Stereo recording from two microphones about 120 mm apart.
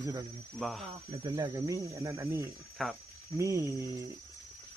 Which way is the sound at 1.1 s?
30° right (ahead or behind).